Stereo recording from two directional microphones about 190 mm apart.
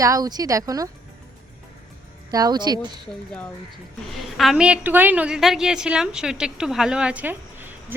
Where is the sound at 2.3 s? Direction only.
20° right (ahead or behind).